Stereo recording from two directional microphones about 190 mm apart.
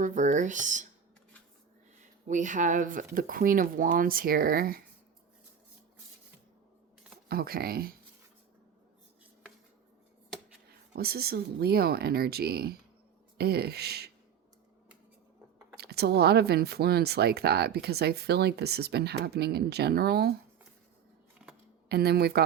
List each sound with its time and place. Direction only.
0.0 s speech: 40° right (ahead or behind)
2.2 s speech: 40° right (ahead or behind)
7.3 s speech: 50° right (ahead or behind)
10.9 s speech: 55° right (ahead or behind)
15.8 s speech: 60° right (ahead or behind)
21.8 s speech: 55° right (ahead or behind)